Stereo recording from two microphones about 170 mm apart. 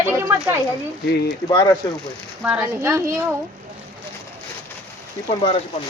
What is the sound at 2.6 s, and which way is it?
Speech, 15° right (ahead or behind).